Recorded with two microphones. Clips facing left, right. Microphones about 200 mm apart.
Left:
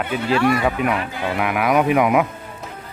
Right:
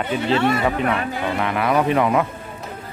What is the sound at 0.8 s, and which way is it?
Speech, 10° left (ahead or behind).